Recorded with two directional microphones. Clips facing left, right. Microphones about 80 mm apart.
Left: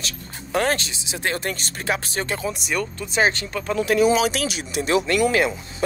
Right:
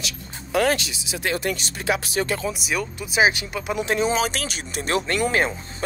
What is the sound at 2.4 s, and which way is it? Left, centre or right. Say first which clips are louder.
Speech: left 1 dB; centre.